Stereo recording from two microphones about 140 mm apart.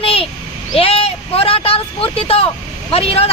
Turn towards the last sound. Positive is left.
turn(degrees=45)  # may be behind; listen again after turning